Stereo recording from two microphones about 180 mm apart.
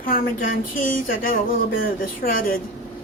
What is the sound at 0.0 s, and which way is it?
Speech, 50° left (ahead or behind).